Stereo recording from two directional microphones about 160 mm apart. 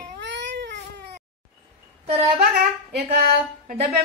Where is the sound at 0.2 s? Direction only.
90° right.